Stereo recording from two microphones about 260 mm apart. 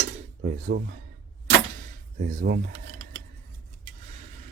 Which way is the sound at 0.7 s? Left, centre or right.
Right.